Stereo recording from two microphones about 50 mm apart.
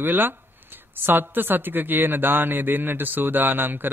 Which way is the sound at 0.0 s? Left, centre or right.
Right.